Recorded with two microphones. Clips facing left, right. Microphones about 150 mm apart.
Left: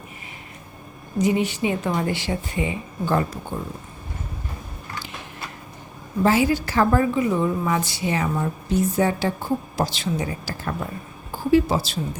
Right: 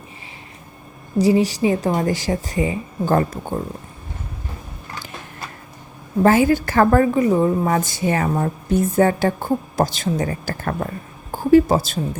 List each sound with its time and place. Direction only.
1.2 s a woman's voice: 35° right (ahead or behind)
6.2 s a woman's voice: 50° right (ahead or behind)